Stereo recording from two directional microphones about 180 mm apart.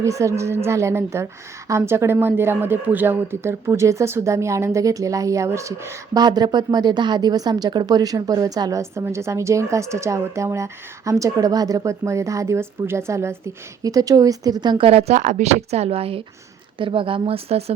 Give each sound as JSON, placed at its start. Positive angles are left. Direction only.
{"t": 0.0, "sound": "a woman's voice", "side_deg": -15}